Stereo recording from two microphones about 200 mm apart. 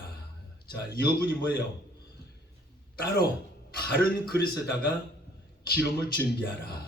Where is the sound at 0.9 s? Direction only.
50° left (ahead or behind).